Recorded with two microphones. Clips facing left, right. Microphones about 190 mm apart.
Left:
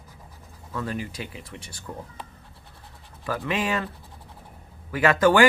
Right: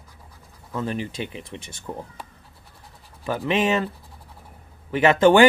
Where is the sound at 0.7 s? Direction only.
20° right (ahead or behind).